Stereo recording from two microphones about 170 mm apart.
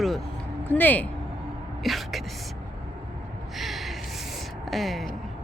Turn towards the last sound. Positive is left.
turn(degrees=0)  # may be behind; listen again after turning